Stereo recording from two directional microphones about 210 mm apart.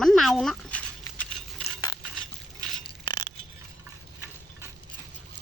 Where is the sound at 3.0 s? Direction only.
20° left (ahead or behind).